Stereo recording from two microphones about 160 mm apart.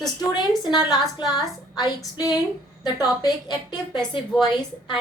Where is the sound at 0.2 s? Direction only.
25° left (ahead or behind).